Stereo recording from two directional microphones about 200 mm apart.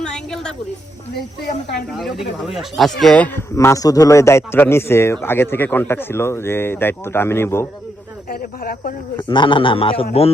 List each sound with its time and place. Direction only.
0.0 s a sound: 5° left (ahead or behind)
2.5 s speech: centre (ahead or behind)
8.3 s speech: 45° left (ahead or behind)
9.1 s a man's voice: 25° left (ahead or behind)